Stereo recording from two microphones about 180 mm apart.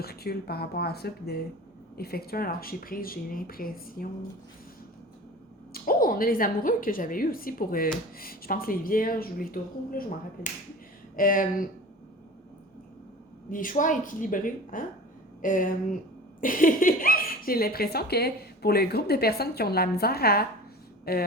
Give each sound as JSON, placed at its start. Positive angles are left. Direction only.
{"t": 0.0, "sound": "speech", "side_deg": 60}
{"t": 5.7, "sound": "a woman's voice", "side_deg": 55}
{"t": 13.5, "sound": "a woman's voice", "side_deg": 50}